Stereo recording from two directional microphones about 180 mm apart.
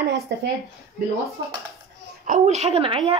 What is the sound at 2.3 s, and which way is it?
Speech, 35° right (ahead or behind).